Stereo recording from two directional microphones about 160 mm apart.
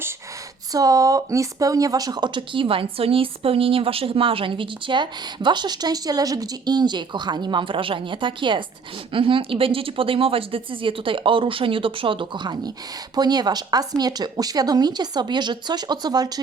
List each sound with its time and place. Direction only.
0.7 s speech: 20° right (ahead or behind)